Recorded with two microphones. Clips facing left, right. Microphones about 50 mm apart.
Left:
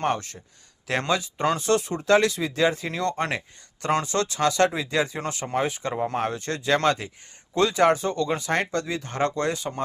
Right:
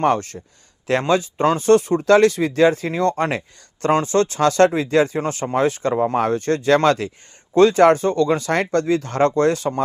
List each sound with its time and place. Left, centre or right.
0.2 s speech: right
5.5 s speech: right
5.9 s speech: right
6.3 s speech: right
7.5 s speech: right